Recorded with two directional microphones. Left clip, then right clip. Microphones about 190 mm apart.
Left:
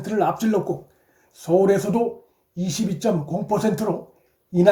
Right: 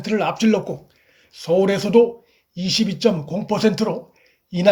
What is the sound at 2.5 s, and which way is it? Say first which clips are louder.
Speech: right 6 dB; 30° right (ahead or behind).